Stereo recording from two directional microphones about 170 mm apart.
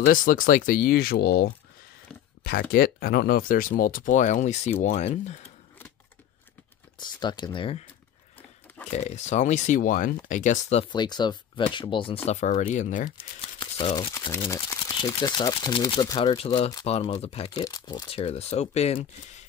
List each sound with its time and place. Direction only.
0.0 s speech: 55° left (ahead or behind)
2.7 s speech: 65° left (ahead or behind); by 5.4 s 40° left (ahead or behind)
7.0 s speech: 25° left (ahead or behind)
8.9 s speech: 40° left (ahead or behind)
10.9 s speech: 25° left (ahead or behind); by 13.1 s 50° left (ahead or behind)
13.4 s a sound: 35° left (ahead or behind)
15.0 s speech: 25° left (ahead or behind)
17.6 s speech: 25° left (ahead or behind); by 18.9 s 40° left (ahead or behind)